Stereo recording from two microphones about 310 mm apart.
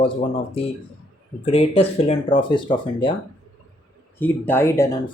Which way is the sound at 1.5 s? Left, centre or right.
Centre.